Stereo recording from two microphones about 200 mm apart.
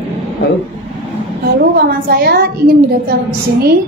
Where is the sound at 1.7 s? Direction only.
50° right (ahead or behind).